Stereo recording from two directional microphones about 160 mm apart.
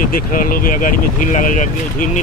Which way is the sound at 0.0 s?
60° left (ahead or behind).